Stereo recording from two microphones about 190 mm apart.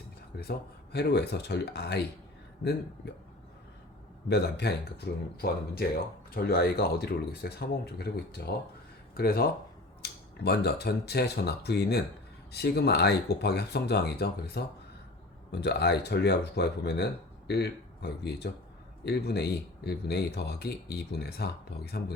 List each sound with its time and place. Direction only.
0.9 s speech: 60° left (ahead or behind)
4.3 s speech: 60° left (ahead or behind)